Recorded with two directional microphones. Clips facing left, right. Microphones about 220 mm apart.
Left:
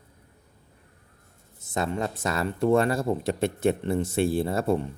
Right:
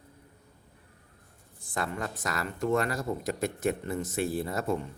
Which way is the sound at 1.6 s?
25° left (ahead or behind).